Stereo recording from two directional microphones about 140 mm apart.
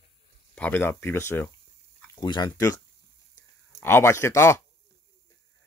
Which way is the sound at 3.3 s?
20° left (ahead or behind).